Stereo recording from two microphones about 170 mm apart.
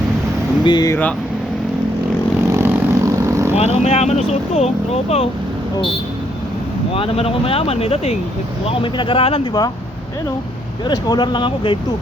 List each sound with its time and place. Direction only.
0.6 s speech: 25° left (ahead or behind)
2.5 s vehicle: 15° right (ahead or behind)
3.5 s speech: 40° left (ahead or behind)
6.9 s speech: 35° left (ahead or behind)
10.8 s speech: 25° left (ahead or behind)